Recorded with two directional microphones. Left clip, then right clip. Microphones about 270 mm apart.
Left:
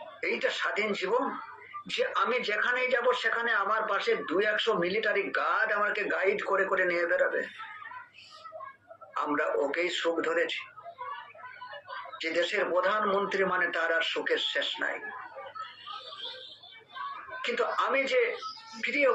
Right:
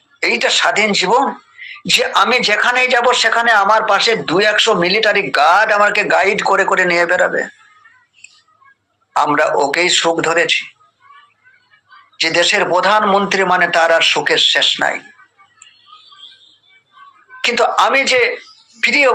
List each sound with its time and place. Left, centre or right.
0.2 s speech: right
9.1 s speech: right
12.1 s speech: right
17.4 s speech: right